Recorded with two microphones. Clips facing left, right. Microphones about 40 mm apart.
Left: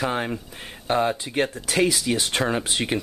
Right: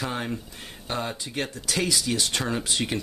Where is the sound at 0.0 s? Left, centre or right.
Left.